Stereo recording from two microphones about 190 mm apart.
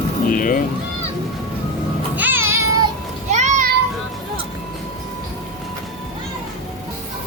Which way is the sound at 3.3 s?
40° right (ahead or behind).